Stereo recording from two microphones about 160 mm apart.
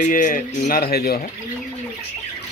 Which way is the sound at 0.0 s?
55° left (ahead or behind).